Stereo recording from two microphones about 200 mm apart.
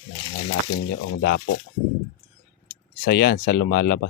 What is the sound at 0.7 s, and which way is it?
Speech, 55° left (ahead or behind).